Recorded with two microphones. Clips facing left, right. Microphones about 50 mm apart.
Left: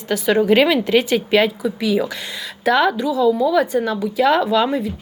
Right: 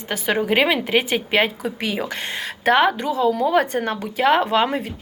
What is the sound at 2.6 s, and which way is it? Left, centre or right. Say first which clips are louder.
Speech: left 1 dB; right.